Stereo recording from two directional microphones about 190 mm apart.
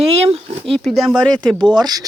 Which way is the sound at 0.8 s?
Centre (ahead or behind).